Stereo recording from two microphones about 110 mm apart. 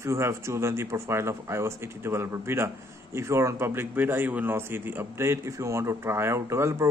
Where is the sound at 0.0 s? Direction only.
25° right (ahead or behind).